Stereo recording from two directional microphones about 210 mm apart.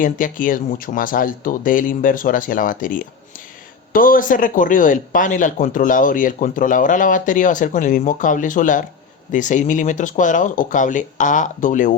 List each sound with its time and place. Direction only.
0.0 s speech: 40° left (ahead or behind)